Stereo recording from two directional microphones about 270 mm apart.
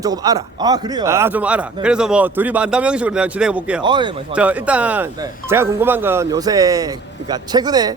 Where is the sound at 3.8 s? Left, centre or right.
Centre.